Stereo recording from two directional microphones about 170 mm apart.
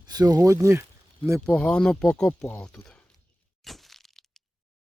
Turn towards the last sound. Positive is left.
turn(degrees=0)  # may be behind; listen again after turning